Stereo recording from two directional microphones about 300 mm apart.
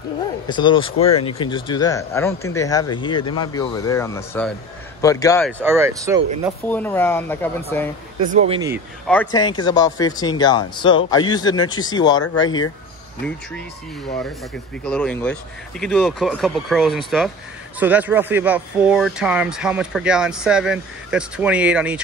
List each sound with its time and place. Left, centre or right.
0.5 s speech: centre
5.4 s speech: centre
6.7 s speech: centre
8.3 s speech: right
8.5 s speech: centre
9.0 s speech: centre
14.9 s speech: centre